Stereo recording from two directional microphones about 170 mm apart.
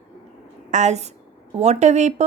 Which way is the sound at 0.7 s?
40° right (ahead or behind).